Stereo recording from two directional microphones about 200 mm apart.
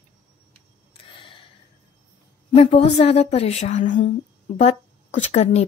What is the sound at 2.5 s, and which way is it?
Speech, 30° left (ahead or behind).